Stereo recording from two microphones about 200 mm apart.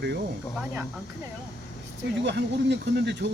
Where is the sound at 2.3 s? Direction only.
60° right (ahead or behind).